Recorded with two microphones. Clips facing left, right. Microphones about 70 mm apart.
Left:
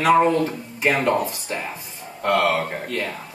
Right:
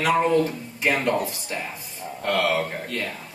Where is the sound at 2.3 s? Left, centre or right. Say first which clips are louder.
Left 2 dB; left.